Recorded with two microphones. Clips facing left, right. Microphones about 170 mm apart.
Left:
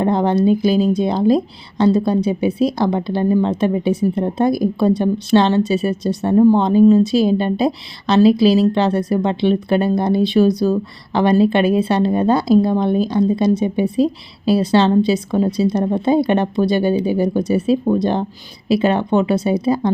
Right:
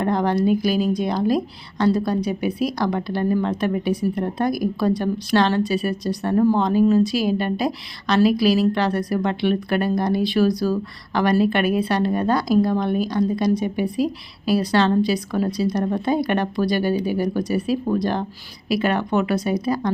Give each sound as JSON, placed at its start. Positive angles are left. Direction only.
{"t": 0.0, "sound": "speech", "side_deg": 25}